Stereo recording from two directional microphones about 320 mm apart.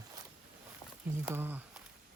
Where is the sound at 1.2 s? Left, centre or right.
Centre.